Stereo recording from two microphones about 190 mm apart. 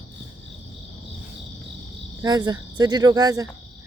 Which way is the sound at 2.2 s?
20° right (ahead or behind).